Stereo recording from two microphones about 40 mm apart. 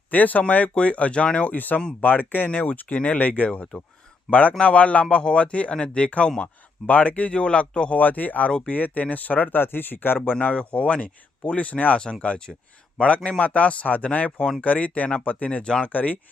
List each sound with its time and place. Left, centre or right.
0.1 s speech: left
1.5 s speech: left
6.4 s speech: left
7.3 s speech: left
7.9 s speech: left
8.4 s speech: left
10.4 s speech: left
12.5 s speech: centre
13.0 s speech: left